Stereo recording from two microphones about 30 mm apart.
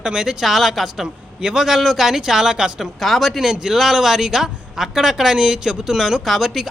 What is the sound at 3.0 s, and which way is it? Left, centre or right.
Speech, centre.